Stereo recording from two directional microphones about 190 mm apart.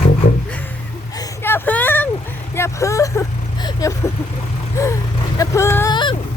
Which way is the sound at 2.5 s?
15° left (ahead or behind).